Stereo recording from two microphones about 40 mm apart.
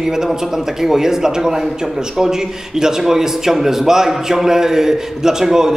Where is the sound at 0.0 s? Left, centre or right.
Centre.